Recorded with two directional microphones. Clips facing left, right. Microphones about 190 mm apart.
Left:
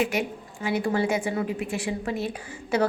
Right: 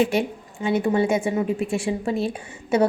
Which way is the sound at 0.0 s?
30° right (ahead or behind).